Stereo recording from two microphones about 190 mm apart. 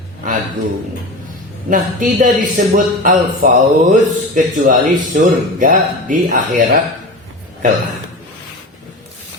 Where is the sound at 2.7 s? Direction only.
45° right (ahead or behind).